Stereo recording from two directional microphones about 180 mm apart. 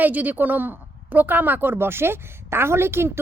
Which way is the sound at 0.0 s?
10° right (ahead or behind).